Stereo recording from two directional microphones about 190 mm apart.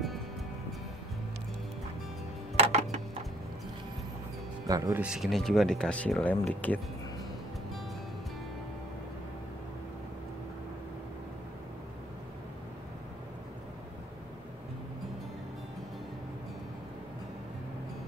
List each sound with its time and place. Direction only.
2.6 s a sound: 35° right (ahead or behind)
4.6 s speech: 20° right (ahead or behind)
5.0 s speech: centre (ahead or behind)